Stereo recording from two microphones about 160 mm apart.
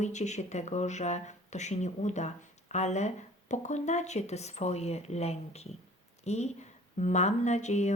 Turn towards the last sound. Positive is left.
turn(degrees=45)  # may be behind; listen again after turning